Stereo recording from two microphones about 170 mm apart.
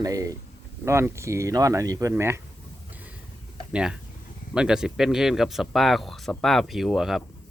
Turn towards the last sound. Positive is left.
turn(degrees=0)  # may be behind; listen again after turning